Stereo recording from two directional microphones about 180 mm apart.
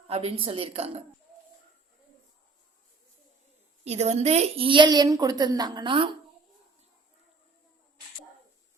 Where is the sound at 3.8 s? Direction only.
35° right (ahead or behind).